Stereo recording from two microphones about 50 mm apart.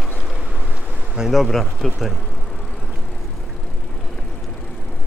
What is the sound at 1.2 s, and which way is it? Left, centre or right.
Speech, centre.